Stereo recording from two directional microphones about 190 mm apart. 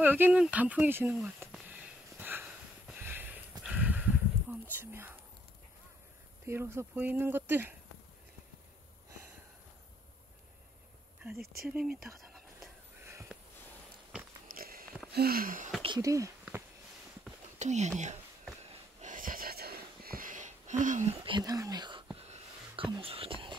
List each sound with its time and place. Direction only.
0.0 s speech: 10° right (ahead or behind)
1.5 s sniff: 5° right (ahead or behind)
3.6 s whispering: 10° right (ahead or behind)
6.4 s speech: 15° right (ahead or behind)
11.6 s speech: 5° right (ahead or behind)
12.5 s a sound: 15° right (ahead or behind)
14.5 s a sound: 50° right (ahead or behind)
15.8 s speech: 20° right (ahead or behind)
17.6 s speech: 35° right (ahead or behind)
18.6 s wheeze: 35° right (ahead or behind)
22.1 s a sound: 30° right (ahead or behind)